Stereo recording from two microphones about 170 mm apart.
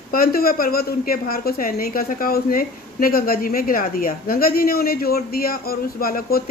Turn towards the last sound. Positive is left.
turn(degrees=60)  # may be behind; listen again after turning